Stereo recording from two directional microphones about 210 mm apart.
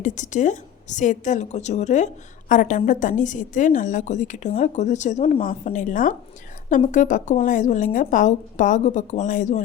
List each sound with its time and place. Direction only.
0.0 s a woman's voice: 35° left (ahead or behind)